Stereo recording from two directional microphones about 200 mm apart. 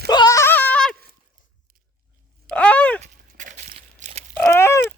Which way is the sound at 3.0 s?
40° right (ahead or behind).